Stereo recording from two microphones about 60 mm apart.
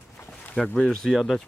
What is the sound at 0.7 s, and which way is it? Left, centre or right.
Speech, centre.